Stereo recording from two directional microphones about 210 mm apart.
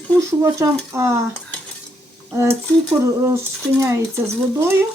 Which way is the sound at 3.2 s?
15° right (ahead or behind).